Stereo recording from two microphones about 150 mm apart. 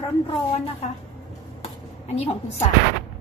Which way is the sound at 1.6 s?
45° left (ahead or behind).